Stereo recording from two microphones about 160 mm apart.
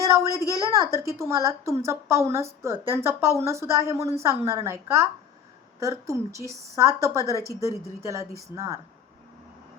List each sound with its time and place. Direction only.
0.0 s a woman's voice: 20° right (ahead or behind)